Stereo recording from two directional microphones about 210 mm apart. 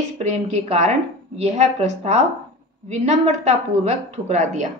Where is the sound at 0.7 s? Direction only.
30° right (ahead or behind).